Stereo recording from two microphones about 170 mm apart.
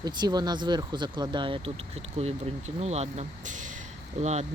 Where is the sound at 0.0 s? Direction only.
25° right (ahead or behind).